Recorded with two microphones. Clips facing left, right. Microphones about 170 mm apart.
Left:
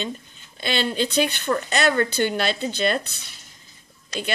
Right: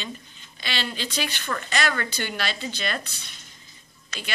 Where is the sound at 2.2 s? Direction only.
40° left (ahead or behind).